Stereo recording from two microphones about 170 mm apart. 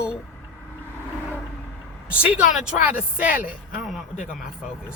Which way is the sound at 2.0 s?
10° right (ahead or behind).